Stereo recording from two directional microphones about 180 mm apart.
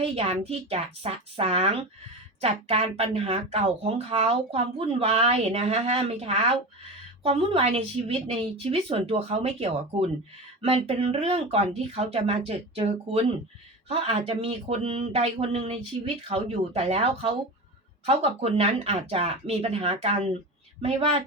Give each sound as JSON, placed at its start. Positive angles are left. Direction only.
{"t": 0.0, "sound": "speech", "side_deg": -35}